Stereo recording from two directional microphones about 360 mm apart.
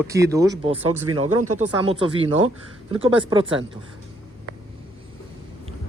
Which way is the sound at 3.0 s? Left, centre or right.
Centre.